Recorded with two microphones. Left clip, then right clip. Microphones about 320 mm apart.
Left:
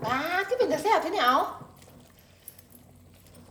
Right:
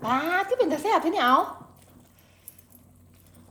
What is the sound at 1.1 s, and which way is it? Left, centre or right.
Speech, right.